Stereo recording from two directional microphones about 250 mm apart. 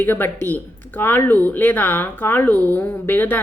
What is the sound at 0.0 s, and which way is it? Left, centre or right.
Speech, centre.